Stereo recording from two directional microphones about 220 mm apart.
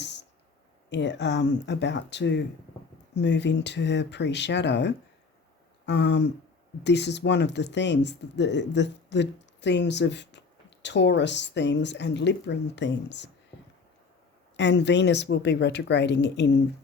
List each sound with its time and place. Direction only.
0.0 s a sound: 50° left (ahead or behind)
0.9 s speech: 55° left (ahead or behind)
14.5 s speech: 55° left (ahead or behind)